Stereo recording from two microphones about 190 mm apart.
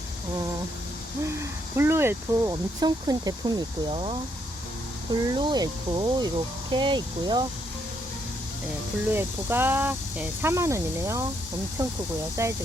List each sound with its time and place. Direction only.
1.7 s speech: 10° right (ahead or behind)
5.2 s speech: 25° right (ahead or behind)
9.1 s speech: 10° right (ahead or behind)